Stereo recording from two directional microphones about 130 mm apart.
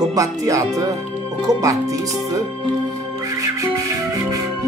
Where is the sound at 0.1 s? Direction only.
25° right (ahead or behind).